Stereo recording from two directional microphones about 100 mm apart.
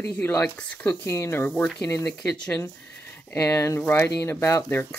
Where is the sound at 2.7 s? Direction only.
15° left (ahead or behind).